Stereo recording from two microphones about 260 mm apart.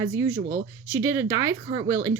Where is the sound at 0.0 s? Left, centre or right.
Centre.